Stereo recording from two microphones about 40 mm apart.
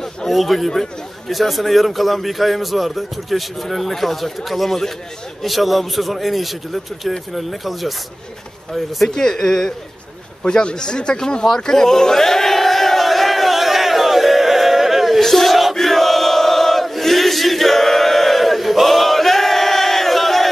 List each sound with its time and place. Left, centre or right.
0.3 s speech: centre
9.1 s speech: centre
10.4 s a sound: left; by 15.2 s centre
15.2 s chant: centre